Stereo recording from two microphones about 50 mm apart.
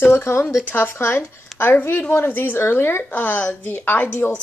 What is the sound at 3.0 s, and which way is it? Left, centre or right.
Speech, left.